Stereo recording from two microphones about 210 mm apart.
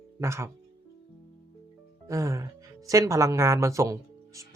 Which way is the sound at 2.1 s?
15° right (ahead or behind).